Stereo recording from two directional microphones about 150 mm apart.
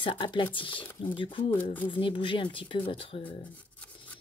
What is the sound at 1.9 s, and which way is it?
Speech, 35° left (ahead or behind).